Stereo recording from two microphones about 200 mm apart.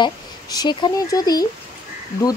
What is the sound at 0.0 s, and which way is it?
Speech, 20° left (ahead or behind).